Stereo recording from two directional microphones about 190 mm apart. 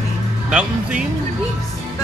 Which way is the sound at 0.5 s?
5° right (ahead or behind).